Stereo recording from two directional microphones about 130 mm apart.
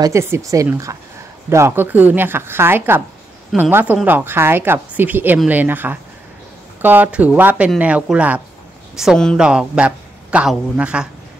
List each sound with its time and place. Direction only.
0.0 s speech: 20° right (ahead or behind); by 9.4 s 5° left (ahead or behind)
9.4 s speech: 5° right (ahead or behind)